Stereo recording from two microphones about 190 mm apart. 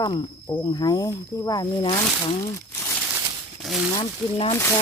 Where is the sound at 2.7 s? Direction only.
15° left (ahead or behind).